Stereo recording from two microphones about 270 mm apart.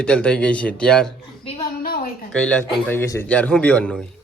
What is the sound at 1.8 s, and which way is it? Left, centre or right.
Speech, left.